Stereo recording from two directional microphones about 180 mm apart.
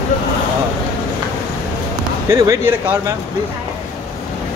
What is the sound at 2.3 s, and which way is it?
Speech, 20° right (ahead or behind).